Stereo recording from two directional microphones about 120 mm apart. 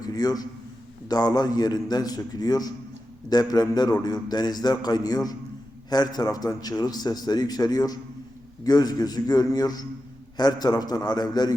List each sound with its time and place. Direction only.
0.0 s a man's voice: 30° left (ahead or behind)